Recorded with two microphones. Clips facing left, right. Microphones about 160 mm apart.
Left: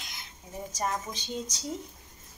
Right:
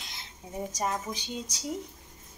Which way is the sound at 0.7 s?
10° right (ahead or behind).